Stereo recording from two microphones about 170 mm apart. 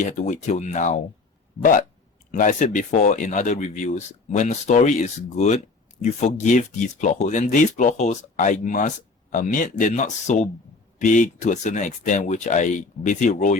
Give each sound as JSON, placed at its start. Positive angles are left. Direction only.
{"t": 0.0, "sound": "speech", "side_deg": 45}
{"t": 2.3, "sound": "speech", "side_deg": 50}